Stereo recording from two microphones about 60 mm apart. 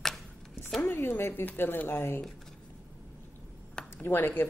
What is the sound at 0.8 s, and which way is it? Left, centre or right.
Speech, left.